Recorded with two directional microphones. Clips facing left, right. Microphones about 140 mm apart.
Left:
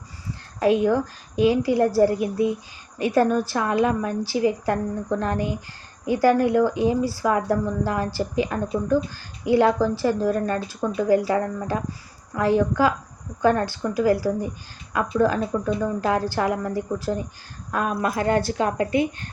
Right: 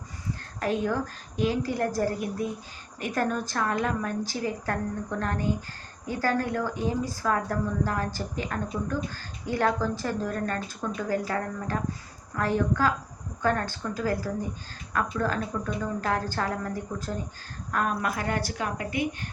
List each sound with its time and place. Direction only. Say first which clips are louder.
0.6 s a woman's voice: left 8 dB; 15° left (ahead or behind)